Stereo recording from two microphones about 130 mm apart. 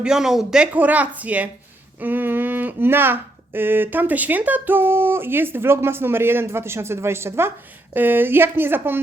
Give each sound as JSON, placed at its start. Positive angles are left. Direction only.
{"t": 0.0, "sound": "speech", "side_deg": -5}